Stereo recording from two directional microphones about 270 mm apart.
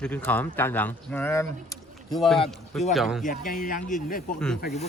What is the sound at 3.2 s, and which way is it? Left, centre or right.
Speech, left.